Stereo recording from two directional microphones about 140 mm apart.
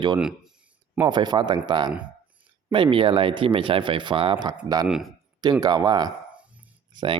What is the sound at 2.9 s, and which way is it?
Speech, 40° right (ahead or behind).